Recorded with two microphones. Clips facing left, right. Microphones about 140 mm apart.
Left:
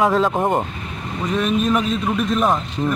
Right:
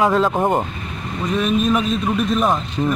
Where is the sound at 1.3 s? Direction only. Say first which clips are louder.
Right 1 dB; 15° right (ahead or behind).